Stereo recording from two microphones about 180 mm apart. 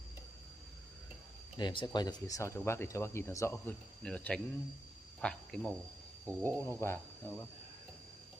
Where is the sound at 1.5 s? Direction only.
25° left (ahead or behind); by 5.7 s 5° left (ahead or behind).